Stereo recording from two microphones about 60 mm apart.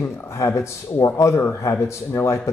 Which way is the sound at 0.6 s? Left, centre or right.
Left.